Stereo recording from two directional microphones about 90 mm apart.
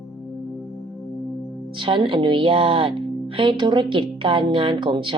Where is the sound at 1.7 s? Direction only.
65° right (ahead or behind).